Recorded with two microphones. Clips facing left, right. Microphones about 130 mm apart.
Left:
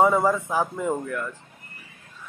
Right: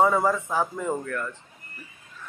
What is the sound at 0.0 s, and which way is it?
Speech, 15° left (ahead or behind).